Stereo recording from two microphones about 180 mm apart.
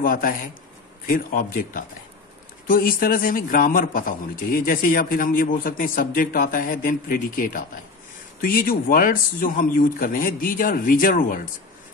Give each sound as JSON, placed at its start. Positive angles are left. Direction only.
{"t": 0.0, "sound": "a man's voice", "side_deg": 50}